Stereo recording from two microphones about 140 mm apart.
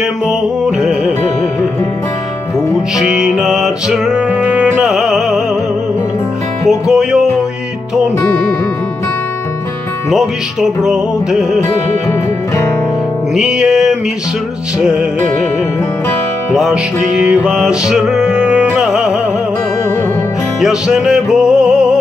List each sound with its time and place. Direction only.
0.3 s music: 5° right (ahead or behind)
3.0 s music: 5° right (ahead or behind)
6.7 s music: 5° right (ahead or behind)
10.0 s music: 5° right (ahead or behind)
12.1 s music: 20° left (ahead or behind)
13.3 s music: 5° right (ahead or behind)
16.5 s music: centre (ahead or behind)
20.6 s music: 5° right (ahead or behind)